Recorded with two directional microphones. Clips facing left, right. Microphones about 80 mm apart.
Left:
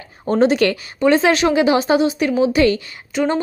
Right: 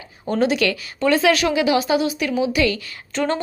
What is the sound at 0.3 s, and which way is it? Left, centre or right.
A woman's voice, left.